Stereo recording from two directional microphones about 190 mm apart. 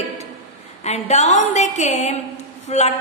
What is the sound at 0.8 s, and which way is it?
Speech, 35° left (ahead or behind).